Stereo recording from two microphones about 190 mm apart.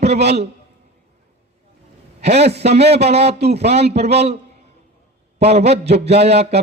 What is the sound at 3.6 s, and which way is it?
Speech, 35° right (ahead or behind).